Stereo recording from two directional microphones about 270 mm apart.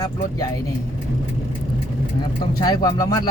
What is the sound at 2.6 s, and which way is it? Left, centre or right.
Speech, centre.